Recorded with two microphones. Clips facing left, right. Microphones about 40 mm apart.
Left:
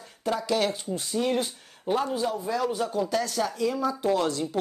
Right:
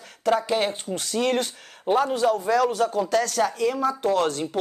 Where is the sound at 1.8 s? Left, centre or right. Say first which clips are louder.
Right 6 dB; right.